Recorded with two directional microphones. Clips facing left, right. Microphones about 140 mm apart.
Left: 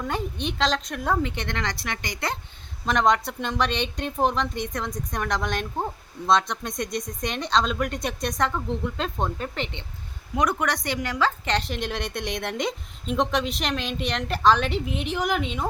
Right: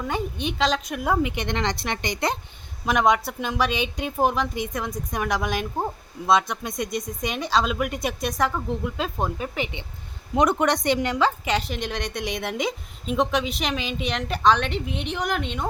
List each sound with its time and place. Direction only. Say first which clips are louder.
0.0 s a woman's voice: right 1 dB; centre (ahead or behind); by 2.4 s 20° right (ahead or behind)
2.8 s a woman's voice: right 1 dB; 5° right (ahead or behind)
10.3 s a woman's voice: right 4 dB; 25° right (ahead or behind)
11.4 s a woman's voice: right 1 dB; 5° right (ahead or behind)